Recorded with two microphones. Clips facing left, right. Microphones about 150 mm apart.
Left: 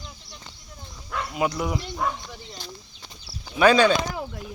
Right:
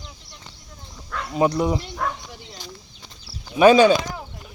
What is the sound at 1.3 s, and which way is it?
Speech, 35° right (ahead or behind).